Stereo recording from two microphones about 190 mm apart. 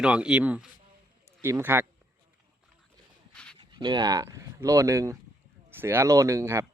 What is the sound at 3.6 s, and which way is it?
Speech, 25° right (ahead or behind).